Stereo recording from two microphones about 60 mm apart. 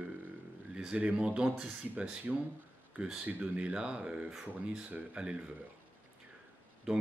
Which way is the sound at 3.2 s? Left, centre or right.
Right.